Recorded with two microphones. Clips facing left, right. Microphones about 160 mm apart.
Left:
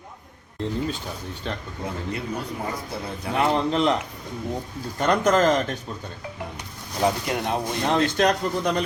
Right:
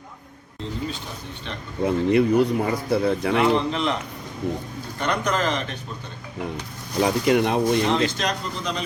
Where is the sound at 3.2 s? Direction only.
90° right.